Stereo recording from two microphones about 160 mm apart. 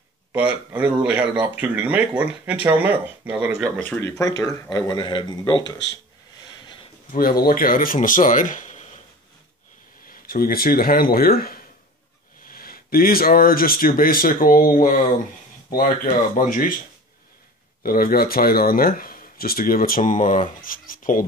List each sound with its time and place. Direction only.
0.3 s speech: 10° right (ahead or behind); by 4.1 s 10° left (ahead or behind)
4.2 s speech: 20° left (ahead or behind)
6.4 s a sound: 30° left (ahead or behind)
7.1 s speech: 65° left (ahead or behind)
10.0 s speech: 65° left (ahead or behind)
17.8 s speech: 65° left (ahead or behind)